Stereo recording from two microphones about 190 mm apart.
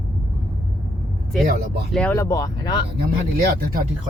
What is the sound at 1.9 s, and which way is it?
Speech, 5° left (ahead or behind).